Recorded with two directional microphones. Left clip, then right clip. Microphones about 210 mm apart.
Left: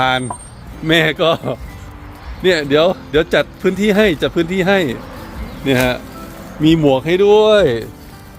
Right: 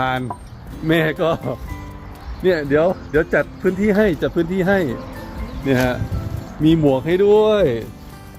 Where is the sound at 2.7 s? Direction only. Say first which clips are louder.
Left 3 dB; 15° left (ahead or behind).